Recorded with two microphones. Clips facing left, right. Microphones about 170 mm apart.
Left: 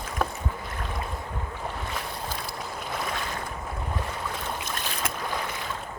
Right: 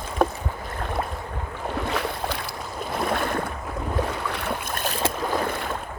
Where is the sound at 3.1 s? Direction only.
55° right (ahead or behind).